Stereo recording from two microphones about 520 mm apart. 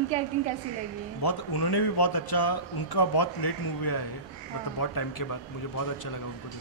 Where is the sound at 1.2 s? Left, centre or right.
Left.